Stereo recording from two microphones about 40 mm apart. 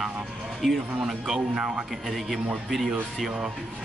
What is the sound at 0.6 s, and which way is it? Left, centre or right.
Speech, centre.